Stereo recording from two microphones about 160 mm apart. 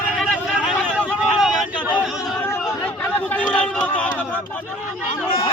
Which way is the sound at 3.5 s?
10° left (ahead or behind).